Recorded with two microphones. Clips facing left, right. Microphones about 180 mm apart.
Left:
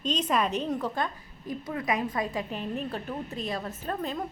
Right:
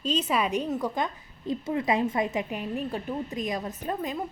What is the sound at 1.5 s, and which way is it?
Speech, 25° right (ahead or behind).